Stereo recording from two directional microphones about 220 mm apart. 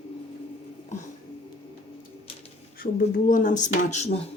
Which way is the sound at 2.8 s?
35° left (ahead or behind).